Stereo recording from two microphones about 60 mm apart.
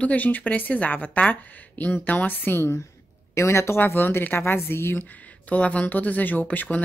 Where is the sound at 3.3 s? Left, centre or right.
Left.